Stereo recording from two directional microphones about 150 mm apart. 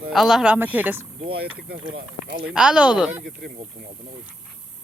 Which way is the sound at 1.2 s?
90° right.